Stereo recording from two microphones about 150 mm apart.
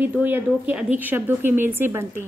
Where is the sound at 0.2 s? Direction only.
10° right (ahead or behind).